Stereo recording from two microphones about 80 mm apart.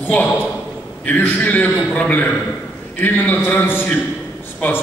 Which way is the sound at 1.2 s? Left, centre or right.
Left.